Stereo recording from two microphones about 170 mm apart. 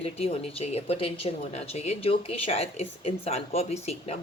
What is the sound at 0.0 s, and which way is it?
Speech, 35° left (ahead or behind).